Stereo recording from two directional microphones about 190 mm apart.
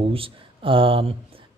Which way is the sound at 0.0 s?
30° right (ahead or behind).